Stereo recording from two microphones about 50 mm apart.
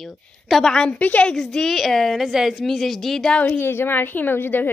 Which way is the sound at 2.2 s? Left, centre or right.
Centre.